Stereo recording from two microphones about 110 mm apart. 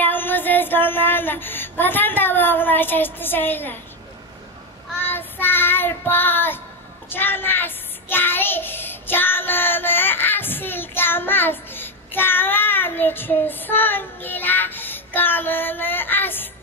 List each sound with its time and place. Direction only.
0.0 s child singing: 20° left (ahead or behind)
5.0 s child singing: 20° left (ahead or behind)